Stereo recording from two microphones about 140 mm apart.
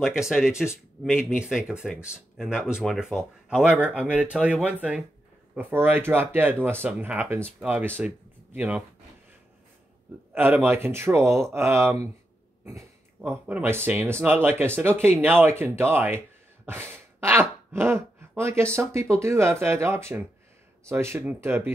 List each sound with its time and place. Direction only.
0.0 s speech: 5° right (ahead or behind)
10.3 s speech: 15° right (ahead or behind)
13.2 s speech: 15° right (ahead or behind)